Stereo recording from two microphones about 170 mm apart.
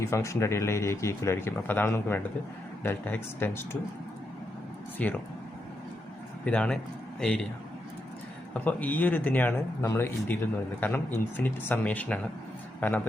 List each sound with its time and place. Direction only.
0.0 s speech: 15° left (ahead or behind)
5.0 s speech: 5° left (ahead or behind)
6.4 s a man's voice: 5° left (ahead or behind)
8.5 s speech: 10° left (ahead or behind)